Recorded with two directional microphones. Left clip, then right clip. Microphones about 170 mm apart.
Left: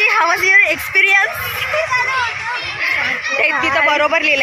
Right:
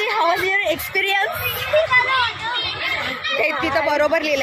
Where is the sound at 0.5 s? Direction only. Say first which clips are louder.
Left 8 dB; 35° right (ahead or behind).